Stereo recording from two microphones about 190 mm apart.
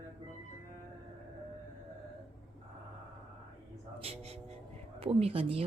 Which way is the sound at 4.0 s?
30° right (ahead or behind).